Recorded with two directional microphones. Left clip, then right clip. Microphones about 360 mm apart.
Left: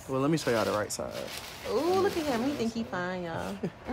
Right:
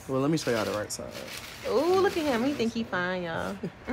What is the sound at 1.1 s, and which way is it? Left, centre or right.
Speech, left.